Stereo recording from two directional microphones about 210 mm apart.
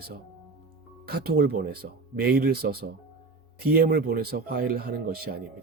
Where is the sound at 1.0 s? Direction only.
50° right (ahead or behind).